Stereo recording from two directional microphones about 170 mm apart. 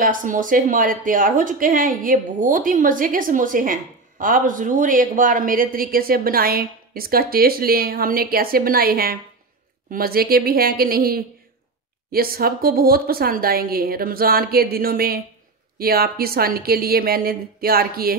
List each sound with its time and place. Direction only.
0.0 s a woman's voice: 50° right (ahead or behind)